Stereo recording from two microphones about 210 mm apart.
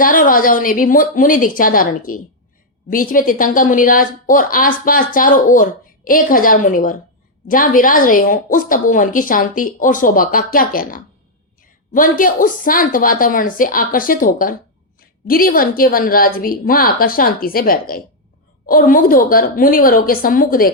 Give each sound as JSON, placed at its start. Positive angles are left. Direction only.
{"t": 0.0, "sound": "a woman's voice", "side_deg": 40}